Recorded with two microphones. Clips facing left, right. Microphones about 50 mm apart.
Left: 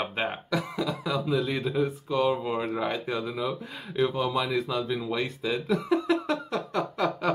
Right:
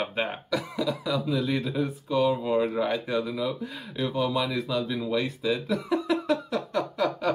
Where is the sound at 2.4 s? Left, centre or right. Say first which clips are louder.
Right 4 dB; centre; by 4.2 s left.